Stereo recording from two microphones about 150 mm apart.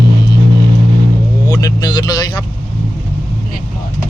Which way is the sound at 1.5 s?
25° left (ahead or behind).